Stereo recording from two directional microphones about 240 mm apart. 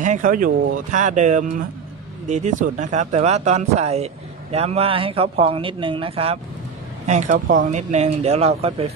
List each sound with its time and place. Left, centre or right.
0.0 s speech: right